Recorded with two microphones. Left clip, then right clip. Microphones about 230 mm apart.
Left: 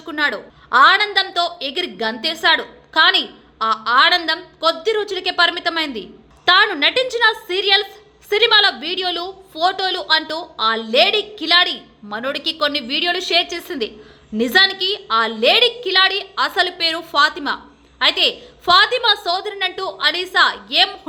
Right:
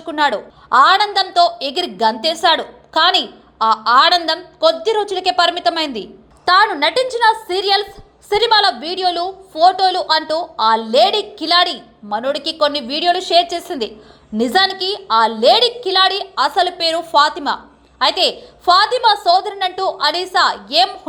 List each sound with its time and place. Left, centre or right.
0.0 s a woman's voice: centre
15.4 s a woman's voice: centre
15.8 s a woman's voice: centre